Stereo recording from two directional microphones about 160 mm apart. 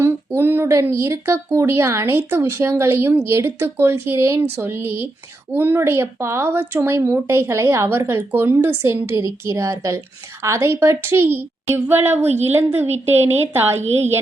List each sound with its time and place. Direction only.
0.0 s a woman's voice: 15° right (ahead or behind)